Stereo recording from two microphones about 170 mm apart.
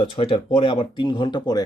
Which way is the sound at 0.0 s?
30° left (ahead or behind).